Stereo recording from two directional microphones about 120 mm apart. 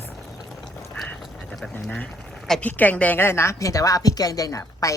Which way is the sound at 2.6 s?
15° left (ahead or behind).